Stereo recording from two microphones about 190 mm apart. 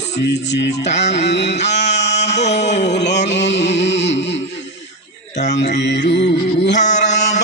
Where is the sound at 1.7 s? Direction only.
35° left (ahead or behind).